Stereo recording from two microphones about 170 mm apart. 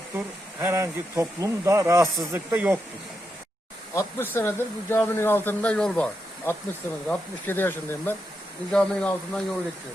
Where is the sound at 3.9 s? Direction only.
15° left (ahead or behind).